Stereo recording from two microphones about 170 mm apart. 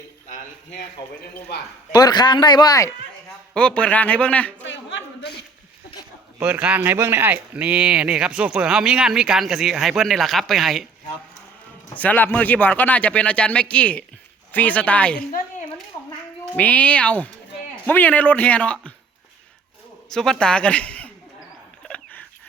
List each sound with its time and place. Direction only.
1.9 s a man's voice: 25° left (ahead or behind)
3.5 s speech: 5° left (ahead or behind)
4.6 s a man's voice: 90° left
6.4 s speech: 10° right (ahead or behind)
11.9 s speech: 10° left (ahead or behind)
16.6 s speech: 10° left (ahead or behind)
20.1 s speech: 5° left (ahead or behind)
21.8 s a sound: 5° left (ahead or behind)